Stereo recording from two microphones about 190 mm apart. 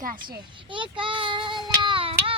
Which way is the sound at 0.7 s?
25° right (ahead or behind).